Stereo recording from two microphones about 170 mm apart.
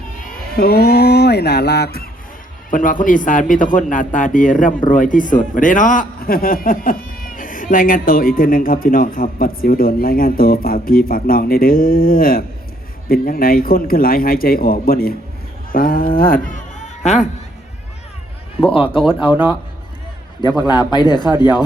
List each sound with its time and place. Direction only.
0.3 s speech: 60° left (ahead or behind)
2.6 s speech: 50° left (ahead or behind)
18.6 s speech: 30° left (ahead or behind)
20.6 s speech: 25° left (ahead or behind)